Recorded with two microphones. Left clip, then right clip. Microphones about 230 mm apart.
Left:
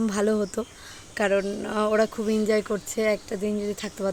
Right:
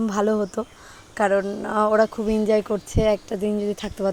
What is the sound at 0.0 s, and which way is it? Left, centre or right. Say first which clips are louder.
Speech: right 3 dB; centre.